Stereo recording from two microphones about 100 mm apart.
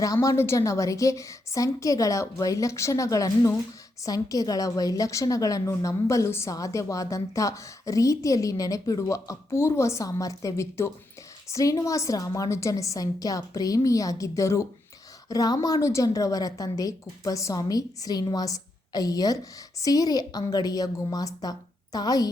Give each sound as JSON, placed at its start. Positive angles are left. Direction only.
{"t": 0.0, "sound": "a woman's voice", "side_deg": 35}